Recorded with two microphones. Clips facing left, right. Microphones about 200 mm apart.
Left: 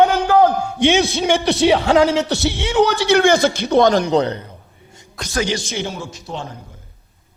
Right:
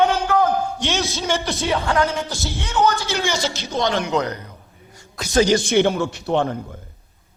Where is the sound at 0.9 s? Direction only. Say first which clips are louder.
Left 13 dB; 55° left (ahead or behind).